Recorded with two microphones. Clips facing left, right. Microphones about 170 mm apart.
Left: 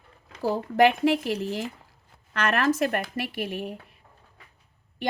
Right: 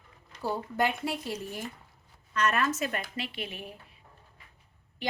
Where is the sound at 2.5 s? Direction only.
70° left (ahead or behind).